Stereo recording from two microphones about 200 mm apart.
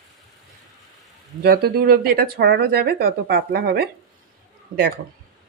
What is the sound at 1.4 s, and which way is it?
Speech, 50° right (ahead or behind).